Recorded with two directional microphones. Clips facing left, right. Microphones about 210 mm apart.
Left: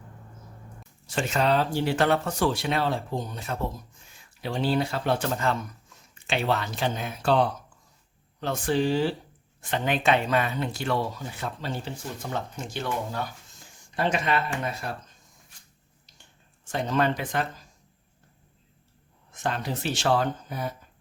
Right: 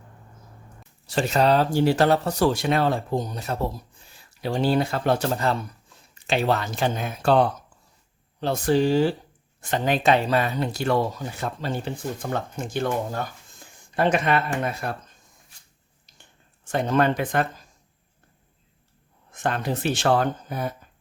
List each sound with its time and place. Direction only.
1.0 s speech: 35° right (ahead or behind)
8.4 s speech: 35° right (ahead or behind); by 14.9 s 55° right (ahead or behind)
16.7 s speech: 55° right (ahead or behind)
19.3 s speech: 55° right (ahead or behind)